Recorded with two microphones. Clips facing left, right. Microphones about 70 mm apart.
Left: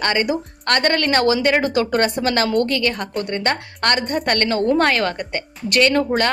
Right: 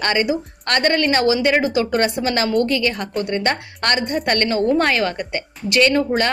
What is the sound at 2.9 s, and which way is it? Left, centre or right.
A woman's voice, left.